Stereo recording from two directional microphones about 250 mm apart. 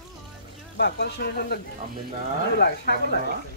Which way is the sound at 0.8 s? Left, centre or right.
Left.